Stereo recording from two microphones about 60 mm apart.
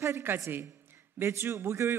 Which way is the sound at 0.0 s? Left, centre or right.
Right.